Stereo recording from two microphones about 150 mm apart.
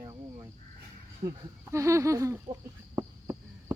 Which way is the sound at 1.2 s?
40° right (ahead or behind).